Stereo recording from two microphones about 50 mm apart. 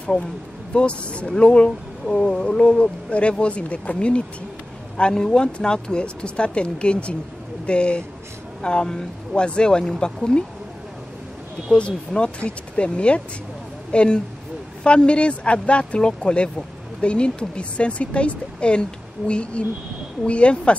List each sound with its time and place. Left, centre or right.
0.7 s speech: left
11.7 s speech: centre